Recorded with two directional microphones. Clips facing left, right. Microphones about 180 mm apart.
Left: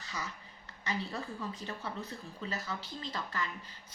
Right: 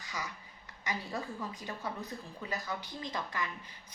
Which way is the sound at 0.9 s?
15° right (ahead or behind).